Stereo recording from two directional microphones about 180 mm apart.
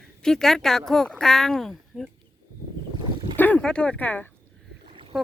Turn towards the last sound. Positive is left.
turn(degrees=-30)  # may be behind; listen again after turning